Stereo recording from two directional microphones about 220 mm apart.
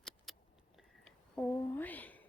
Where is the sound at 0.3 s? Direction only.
Centre (ahead or behind).